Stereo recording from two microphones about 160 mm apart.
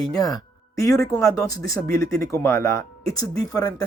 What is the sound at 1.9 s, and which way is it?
Speech, 65° right (ahead or behind).